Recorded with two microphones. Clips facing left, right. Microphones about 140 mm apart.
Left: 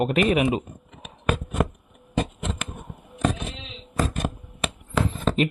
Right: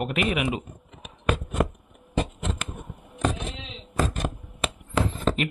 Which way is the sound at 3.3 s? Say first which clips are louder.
Left 1 dB; 5° left (ahead or behind).